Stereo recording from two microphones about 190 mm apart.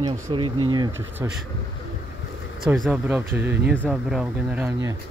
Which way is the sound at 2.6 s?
Centre (ahead or behind).